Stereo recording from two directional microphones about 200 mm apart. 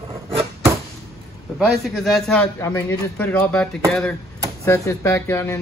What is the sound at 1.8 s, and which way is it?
Speech, centre (ahead or behind).